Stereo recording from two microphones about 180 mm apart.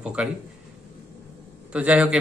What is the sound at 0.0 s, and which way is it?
Speech, 5° right (ahead or behind).